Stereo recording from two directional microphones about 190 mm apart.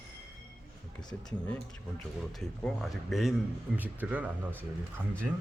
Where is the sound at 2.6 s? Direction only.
Centre (ahead or behind).